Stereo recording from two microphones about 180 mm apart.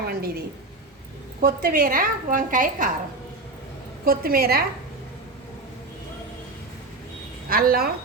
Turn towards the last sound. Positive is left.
turn(degrees=-55)  # may be behind; listen again after turning